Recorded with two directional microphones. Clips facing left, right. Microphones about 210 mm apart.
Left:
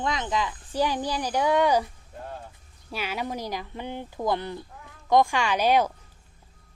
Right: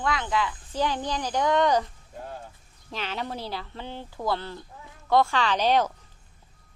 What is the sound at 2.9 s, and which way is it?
Speech, 10° left (ahead or behind).